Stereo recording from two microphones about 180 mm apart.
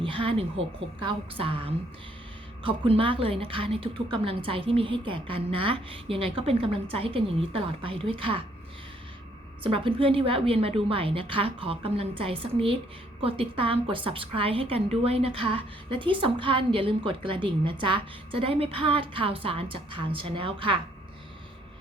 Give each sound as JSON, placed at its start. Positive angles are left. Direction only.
{"t": 0.0, "sound": "a woman's voice", "side_deg": -30}
{"t": 9.6, "sound": "a woman's voice", "side_deg": -30}